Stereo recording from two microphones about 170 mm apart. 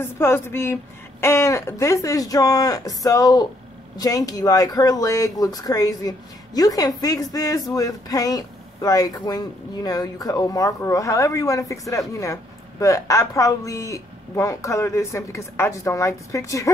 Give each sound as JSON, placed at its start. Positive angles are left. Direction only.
{"t": 0.0, "sound": "speech", "side_deg": 15}